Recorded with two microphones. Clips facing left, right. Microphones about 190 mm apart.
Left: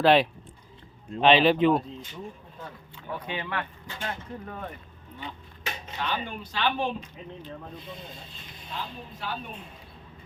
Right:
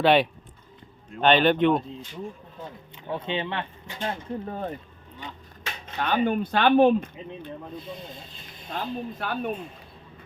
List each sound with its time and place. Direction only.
0.0 s speech: centre (ahead or behind)
2.6 s speech: 25° right (ahead or behind)
6.0 s speech: 55° right (ahead or behind)
8.7 s speech: 55° right (ahead or behind)